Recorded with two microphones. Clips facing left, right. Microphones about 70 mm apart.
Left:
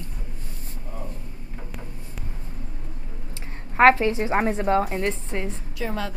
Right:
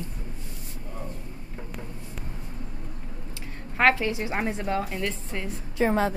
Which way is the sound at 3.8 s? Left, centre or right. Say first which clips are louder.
Left 6 dB; left.